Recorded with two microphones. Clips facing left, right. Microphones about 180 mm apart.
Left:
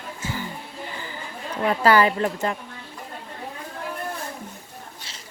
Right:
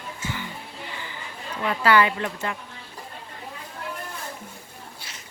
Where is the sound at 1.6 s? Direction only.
40° left (ahead or behind).